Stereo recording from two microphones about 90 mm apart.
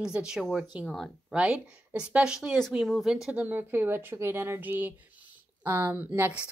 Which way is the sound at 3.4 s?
20° right (ahead or behind).